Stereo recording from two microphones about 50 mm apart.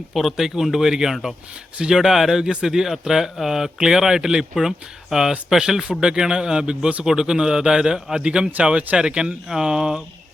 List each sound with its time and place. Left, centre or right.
0.1 s a man's voice: centre
2.4 s a man's voice: centre